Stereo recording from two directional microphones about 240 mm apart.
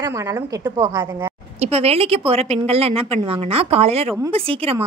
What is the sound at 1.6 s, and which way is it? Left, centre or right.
A woman's voice, right.